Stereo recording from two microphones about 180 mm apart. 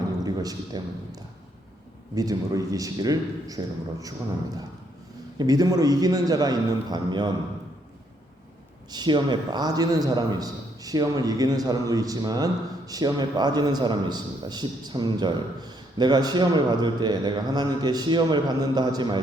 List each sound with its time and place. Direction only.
0.2 s a man's voice: 20° right (ahead or behind)
5.4 s a man's voice: 20° right (ahead or behind)
8.9 s a man's voice: 25° right (ahead or behind)